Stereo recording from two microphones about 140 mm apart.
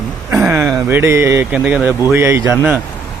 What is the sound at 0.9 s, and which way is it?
Speech, 15° right (ahead or behind).